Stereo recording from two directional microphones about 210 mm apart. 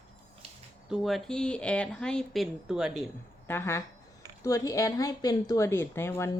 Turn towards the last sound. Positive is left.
turn(degrees=10)  # may be behind; listen again after turning